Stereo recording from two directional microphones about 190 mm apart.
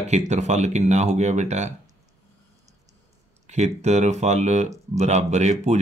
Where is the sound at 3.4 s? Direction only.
35° right (ahead or behind).